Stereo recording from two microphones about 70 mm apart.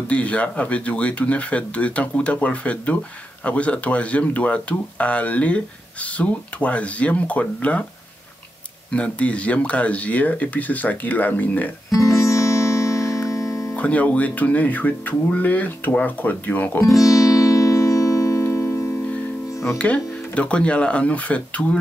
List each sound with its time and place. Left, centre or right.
0.1 s speech: centre
8.9 s speech: centre
11.9 s music: left
13.7 s speech: left
16.8 s music: left
19.8 s speech: centre